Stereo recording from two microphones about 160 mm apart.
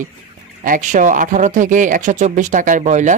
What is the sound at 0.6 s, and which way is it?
Speech, 55° right (ahead or behind).